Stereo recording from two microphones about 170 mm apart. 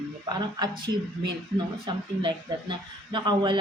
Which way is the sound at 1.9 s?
25° right (ahead or behind).